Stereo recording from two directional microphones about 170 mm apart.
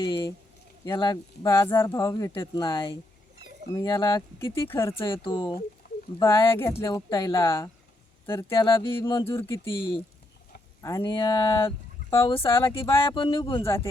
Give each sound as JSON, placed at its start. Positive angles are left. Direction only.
{"t": 0.0, "sound": "speech", "side_deg": 30}
{"t": 4.7, "sound": "speech", "side_deg": 15}
{"t": 5.0, "sound": "speech", "side_deg": 30}
{"t": 10.8, "sound": "speech", "side_deg": 20}